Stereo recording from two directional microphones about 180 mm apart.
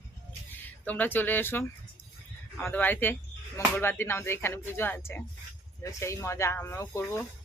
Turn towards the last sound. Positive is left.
turn(degrees=15)  # may be behind; listen again after turning